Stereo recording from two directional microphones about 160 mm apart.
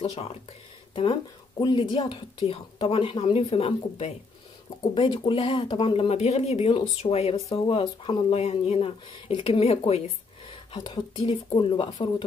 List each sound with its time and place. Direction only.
0.0 s speech: 40° left (ahead or behind)